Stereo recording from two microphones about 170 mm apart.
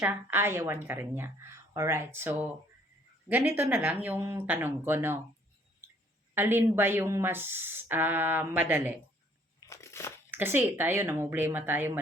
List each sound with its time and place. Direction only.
0.0 s speech: 10° right (ahead or behind)
6.3 s speech: 15° right (ahead or behind)
9.6 s crushing: 15° left (ahead or behind)
10.3 s speech: 15° right (ahead or behind)